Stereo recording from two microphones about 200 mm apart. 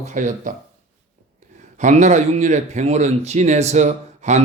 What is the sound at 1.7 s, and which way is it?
Speech, 35° right (ahead or behind).